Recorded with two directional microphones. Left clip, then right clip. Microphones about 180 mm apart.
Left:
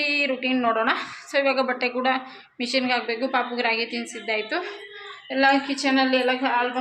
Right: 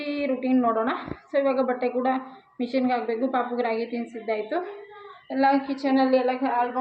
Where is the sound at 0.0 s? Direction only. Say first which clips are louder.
Left 4 dB; 10° right (ahead or behind).